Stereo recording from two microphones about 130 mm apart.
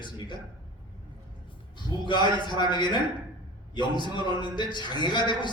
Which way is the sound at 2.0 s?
35° left (ahead or behind).